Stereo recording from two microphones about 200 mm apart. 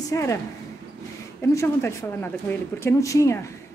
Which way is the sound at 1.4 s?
15° left (ahead or behind).